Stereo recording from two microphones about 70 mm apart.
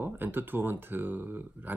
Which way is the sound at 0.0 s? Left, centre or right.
Right.